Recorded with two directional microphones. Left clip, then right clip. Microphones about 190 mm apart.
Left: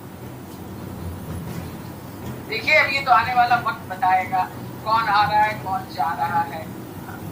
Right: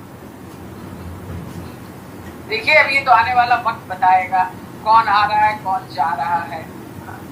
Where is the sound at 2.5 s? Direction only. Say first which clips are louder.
Right 5 dB; 45° right (ahead or behind).